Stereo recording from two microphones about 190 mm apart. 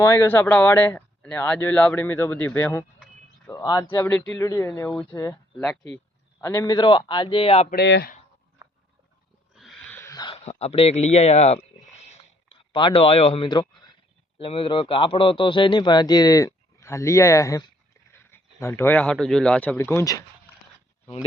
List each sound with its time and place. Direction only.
0.0 s speech: 15° left (ahead or behind)
3.4 s speech: 20° left (ahead or behind)
5.5 s speech: 5° left (ahead or behind)
6.4 s a man's voice: 15° left (ahead or behind); by 7.7 s 30° left (ahead or behind)
7.7 s speech: 60° left (ahead or behind)
9.6 s wild animals: centre (ahead or behind); by 10.3 s 20° left (ahead or behind)
10.3 s a man's voice: 35° left (ahead or behind); by 20.2 s 15° left (ahead or behind)